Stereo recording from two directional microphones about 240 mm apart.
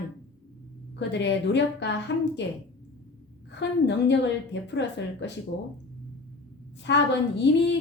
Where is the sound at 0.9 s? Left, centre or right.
Left.